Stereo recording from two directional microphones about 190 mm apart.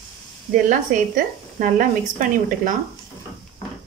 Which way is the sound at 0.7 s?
45° right (ahead or behind).